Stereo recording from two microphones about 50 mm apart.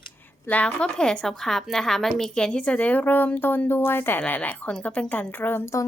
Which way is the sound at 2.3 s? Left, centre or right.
Centre.